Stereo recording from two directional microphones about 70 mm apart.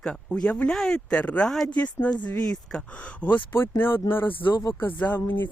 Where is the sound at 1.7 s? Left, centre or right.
Centre.